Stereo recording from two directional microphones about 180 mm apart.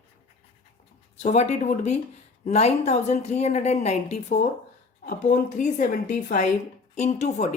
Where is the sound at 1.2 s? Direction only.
40° left (ahead or behind).